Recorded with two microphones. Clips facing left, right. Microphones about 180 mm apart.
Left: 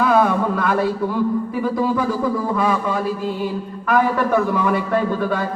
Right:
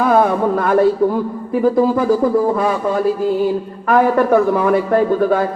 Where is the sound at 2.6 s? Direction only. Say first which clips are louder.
Right 3 dB; 45° right (ahead or behind).